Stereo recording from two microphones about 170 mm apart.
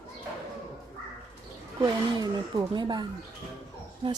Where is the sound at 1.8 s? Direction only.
25° right (ahead or behind).